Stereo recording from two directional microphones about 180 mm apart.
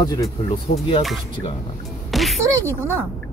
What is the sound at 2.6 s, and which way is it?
Speech, 15° right (ahead or behind).